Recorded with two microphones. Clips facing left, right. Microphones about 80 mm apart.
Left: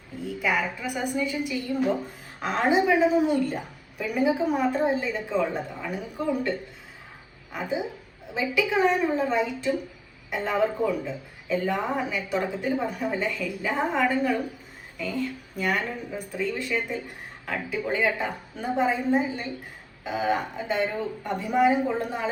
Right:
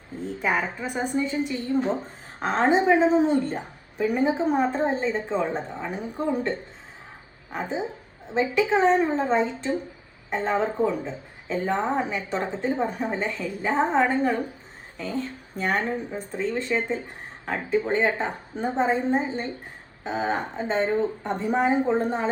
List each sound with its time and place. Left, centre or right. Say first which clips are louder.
0.3 s speech: right 1 dB; right
7.5 s a woman's voice: even; right